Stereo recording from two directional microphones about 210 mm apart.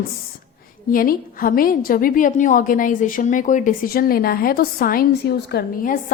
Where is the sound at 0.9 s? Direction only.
40° left (ahead or behind).